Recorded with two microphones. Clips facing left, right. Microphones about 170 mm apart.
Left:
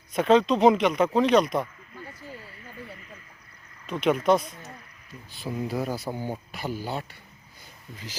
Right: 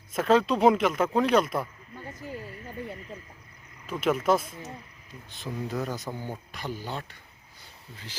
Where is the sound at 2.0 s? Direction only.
20° right (ahead or behind).